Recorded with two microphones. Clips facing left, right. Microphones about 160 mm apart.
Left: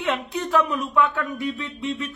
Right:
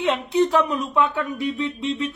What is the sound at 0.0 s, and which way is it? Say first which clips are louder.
Speech: right 6 dB; 25° right (ahead or behind).